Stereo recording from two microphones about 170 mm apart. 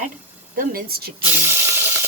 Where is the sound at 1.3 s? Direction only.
15° right (ahead or behind).